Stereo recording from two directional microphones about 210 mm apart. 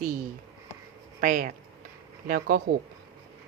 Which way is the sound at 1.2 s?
40° right (ahead or behind).